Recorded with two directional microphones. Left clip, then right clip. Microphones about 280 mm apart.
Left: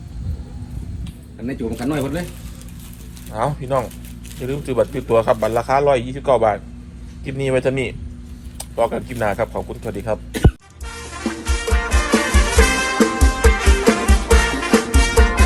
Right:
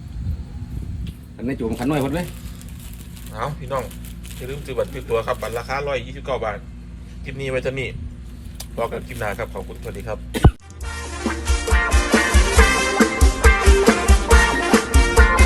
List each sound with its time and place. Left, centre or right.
1.5 s speech: right
3.3 s speech: centre
10.8 s music: centre